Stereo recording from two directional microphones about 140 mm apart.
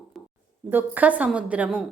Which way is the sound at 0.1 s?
Centre (ahead or behind).